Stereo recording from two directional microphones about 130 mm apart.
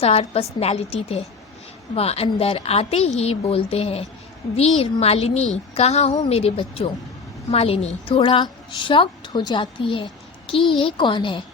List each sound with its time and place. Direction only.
0.0 s a woman's voice: 50° left (ahead or behind)